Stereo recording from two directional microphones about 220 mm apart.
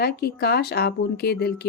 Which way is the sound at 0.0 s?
45° left (ahead or behind).